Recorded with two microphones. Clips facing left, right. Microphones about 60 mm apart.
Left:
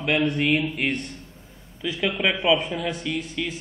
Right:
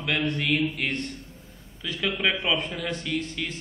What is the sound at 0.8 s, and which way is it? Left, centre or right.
A man's voice, centre.